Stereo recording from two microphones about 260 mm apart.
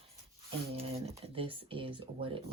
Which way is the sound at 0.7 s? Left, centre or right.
Right.